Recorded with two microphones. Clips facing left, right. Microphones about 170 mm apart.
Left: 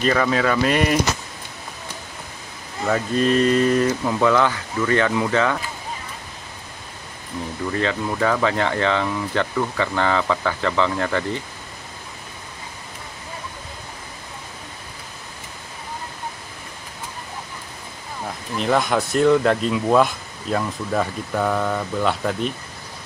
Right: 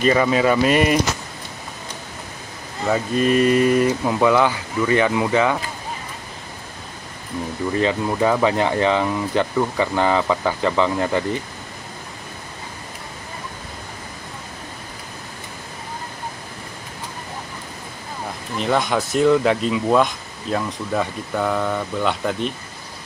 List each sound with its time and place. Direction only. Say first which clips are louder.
0.0 s speech: right 3 dB; 10° right (ahead or behind)
2.8 s speech: right 1 dB; 10° right (ahead or behind)
7.8 s speech: right 3 dB; 15° right (ahead or behind)
18.6 s speech: even; centre (ahead or behind)